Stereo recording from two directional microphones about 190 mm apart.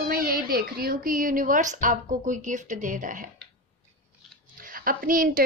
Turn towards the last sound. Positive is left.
turn(degrees=-45)  # may be behind; listen again after turning